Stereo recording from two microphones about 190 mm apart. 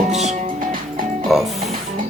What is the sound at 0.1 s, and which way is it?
Music, 35° right (ahead or behind).